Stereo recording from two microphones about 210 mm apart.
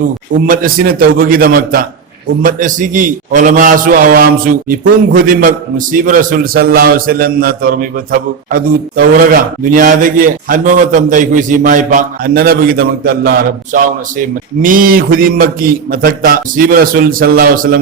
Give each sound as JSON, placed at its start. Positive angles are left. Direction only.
{"t": 0.4, "sound": "a man's voice", "side_deg": -40}